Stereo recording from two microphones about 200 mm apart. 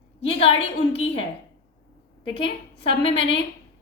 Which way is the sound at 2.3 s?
25° left (ahead or behind).